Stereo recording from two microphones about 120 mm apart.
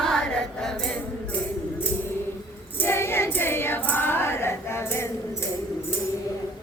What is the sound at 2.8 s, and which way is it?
Female singing, 20° left (ahead or behind).